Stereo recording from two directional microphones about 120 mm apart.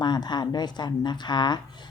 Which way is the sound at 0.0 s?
35° left (ahead or behind).